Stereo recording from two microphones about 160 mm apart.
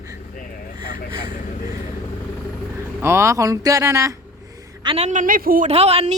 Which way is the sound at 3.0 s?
15° right (ahead or behind).